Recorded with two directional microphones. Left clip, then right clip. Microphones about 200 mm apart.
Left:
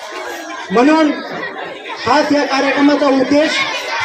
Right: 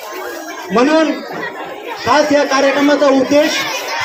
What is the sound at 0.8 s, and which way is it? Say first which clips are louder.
Speech: left 1 dB; 50° left (ahead or behind).